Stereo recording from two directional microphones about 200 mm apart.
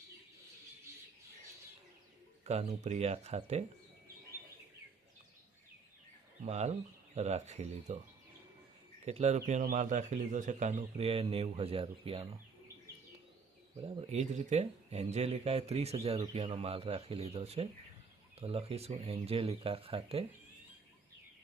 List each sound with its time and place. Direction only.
2.4 s a sound: 30° right (ahead or behind)
2.8 s speech: 35° right (ahead or behind)
6.4 s speech: 35° right (ahead or behind)
9.0 s speech: 35° right (ahead or behind)
13.7 s speech: 25° right (ahead or behind)